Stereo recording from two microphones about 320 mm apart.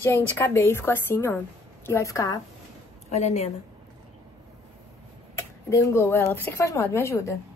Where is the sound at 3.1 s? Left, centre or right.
Left.